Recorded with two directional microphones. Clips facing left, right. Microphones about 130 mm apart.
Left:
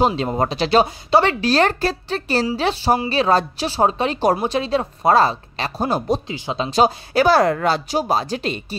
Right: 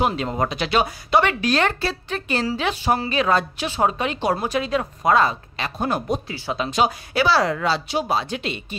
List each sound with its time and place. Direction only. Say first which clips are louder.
0.0 s speech: left 3 dB; 30° left (ahead or behind)
6.3 s speech: left 1 dB; 15° left (ahead or behind)
6.6 s speech: left 4 dB; 35° left (ahead or behind)